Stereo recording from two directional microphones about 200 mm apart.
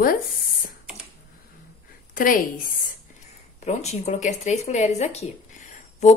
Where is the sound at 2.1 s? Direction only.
45° left (ahead or behind).